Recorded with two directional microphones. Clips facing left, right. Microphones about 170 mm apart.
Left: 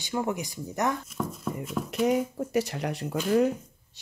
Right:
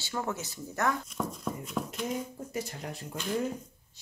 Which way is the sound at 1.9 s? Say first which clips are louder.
Left 10 dB; 75° left (ahead or behind).